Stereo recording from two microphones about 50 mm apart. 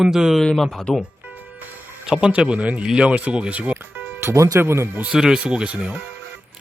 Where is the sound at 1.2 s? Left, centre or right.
Right.